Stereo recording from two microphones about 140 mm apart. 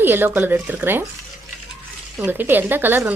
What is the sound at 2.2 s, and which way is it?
Speech, 15° right (ahead or behind).